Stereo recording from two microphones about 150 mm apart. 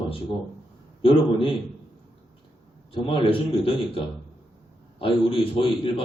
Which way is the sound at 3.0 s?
35° left (ahead or behind).